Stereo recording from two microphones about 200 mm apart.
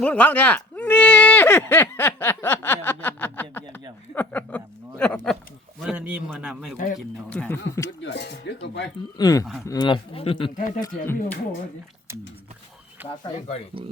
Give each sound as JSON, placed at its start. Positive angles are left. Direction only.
{"t": 0.0, "sound": "speech", "side_deg": 5}
{"t": 4.1, "sound": "a sound", "side_deg": 10}
{"t": 5.8, "sound": "a sound", "side_deg": -5}
{"t": 6.3, "sound": "speech", "side_deg": -5}
{"t": 6.7, "sound": "speech", "side_deg": 40}
{"t": 7.3, "sound": "speech", "side_deg": 10}
{"t": 7.9, "sound": "speech", "side_deg": 65}
{"t": 9.1, "sound": "speech", "side_deg": 20}
{"t": 10.8, "sound": "speech", "side_deg": 15}
{"t": 13.0, "sound": "a sound", "side_deg": -10}